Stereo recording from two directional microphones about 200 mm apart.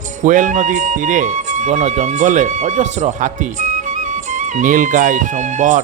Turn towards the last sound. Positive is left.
turn(degrees=-40)  # may be behind; listen again after turning